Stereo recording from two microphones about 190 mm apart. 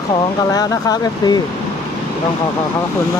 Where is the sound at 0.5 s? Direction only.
20° left (ahead or behind).